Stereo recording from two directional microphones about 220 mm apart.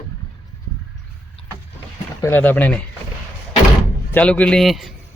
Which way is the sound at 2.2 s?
10° left (ahead or behind).